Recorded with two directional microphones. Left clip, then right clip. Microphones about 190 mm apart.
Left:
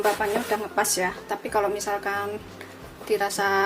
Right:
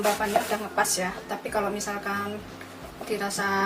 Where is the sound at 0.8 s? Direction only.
45° left (ahead or behind).